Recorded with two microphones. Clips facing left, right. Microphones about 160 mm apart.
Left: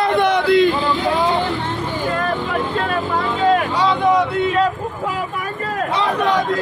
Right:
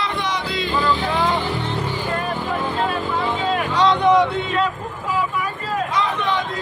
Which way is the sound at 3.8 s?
5° left (ahead or behind).